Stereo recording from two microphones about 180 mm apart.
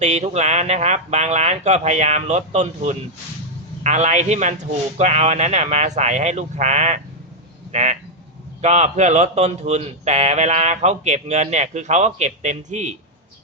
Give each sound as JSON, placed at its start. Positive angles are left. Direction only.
{"t": 0.0, "sound": "a man's voice", "side_deg": -40}
{"t": 7.7, "sound": "a sound", "side_deg": -40}
{"t": 8.6, "sound": "a man's voice", "side_deg": -40}